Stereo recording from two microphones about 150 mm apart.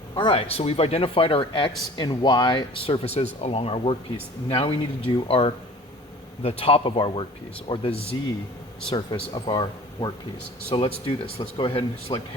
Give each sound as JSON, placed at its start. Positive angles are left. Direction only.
{"t": 0.2, "sound": "speech", "side_deg": 35}